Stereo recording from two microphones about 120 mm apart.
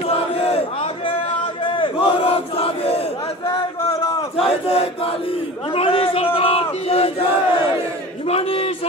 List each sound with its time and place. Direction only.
0.4 s battle cry: 50° left (ahead or behind)
3.4 s a sound: 35° left (ahead or behind)
4.5 s chant: 55° left (ahead or behind)
5.7 s battle cry: 50° left (ahead or behind)